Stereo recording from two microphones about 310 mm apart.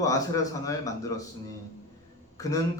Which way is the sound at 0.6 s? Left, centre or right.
Centre.